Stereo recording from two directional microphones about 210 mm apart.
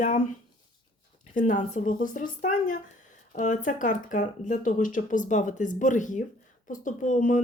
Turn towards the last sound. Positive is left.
turn(degrees=35)  # may be behind; listen again after turning